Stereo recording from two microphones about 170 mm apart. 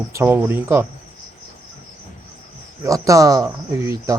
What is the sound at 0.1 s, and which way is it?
Speech, 15° right (ahead or behind).